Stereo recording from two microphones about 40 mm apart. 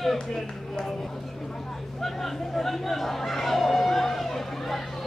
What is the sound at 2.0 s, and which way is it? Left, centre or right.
Chatter, centre.